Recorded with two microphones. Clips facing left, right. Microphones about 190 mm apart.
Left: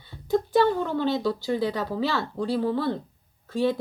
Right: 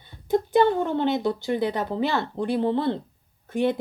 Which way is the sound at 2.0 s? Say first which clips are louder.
Right 2 dB; 50° right (ahead or behind).